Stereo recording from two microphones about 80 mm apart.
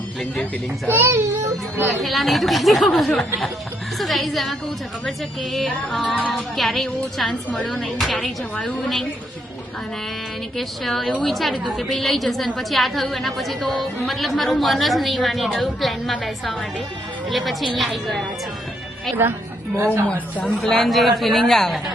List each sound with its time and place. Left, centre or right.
0.9 s a child's voice: right
2.0 s a woman's voice: centre
6.1 s a woman's voice: centre
6.6 s a woman's voice: centre
8.5 s a woman's voice: centre
10.6 s a woman's voice: centre
19.7 s speech: right
20.3 s a woman's voice: centre
20.6 s a woman's voice: centre